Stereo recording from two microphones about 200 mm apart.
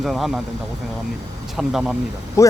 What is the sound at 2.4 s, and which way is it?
Speech, 15° left (ahead or behind).